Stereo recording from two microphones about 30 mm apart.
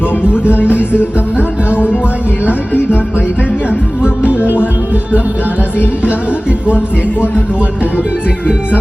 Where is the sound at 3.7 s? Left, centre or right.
Right.